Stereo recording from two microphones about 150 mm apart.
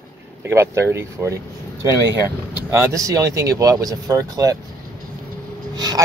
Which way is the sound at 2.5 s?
15° right (ahead or behind).